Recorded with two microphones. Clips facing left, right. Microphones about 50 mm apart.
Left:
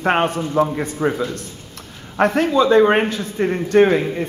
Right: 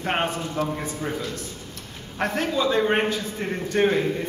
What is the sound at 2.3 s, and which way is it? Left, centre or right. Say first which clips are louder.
Speech: left 7 dB; left.